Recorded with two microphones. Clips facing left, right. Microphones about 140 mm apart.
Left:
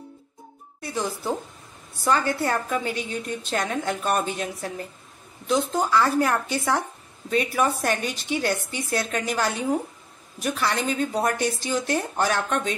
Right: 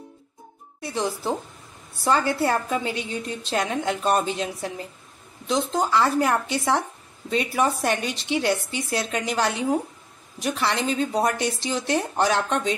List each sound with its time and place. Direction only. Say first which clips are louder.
0.7 s a woman's voice: right 2 dB; 25° right (ahead or behind)